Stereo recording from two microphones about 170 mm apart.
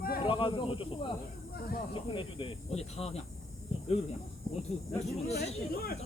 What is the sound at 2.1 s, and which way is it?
Speech, 30° left (ahead or behind).